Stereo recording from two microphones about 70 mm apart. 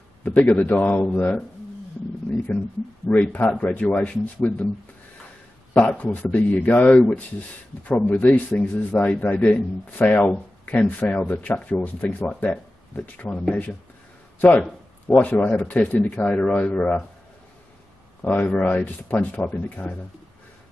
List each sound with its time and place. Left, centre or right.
0.2 s a man's voice: left
6.1 s a man's voice: left
14.4 s a sound: left
15.2 s a man's voice: left
18.2 s a man's voice: left